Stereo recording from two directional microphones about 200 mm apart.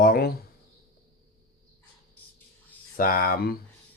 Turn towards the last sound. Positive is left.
turn(degrees=50)  # may be behind; listen again after turning